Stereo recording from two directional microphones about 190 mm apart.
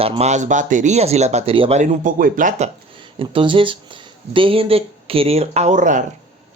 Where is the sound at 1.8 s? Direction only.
40° right (ahead or behind).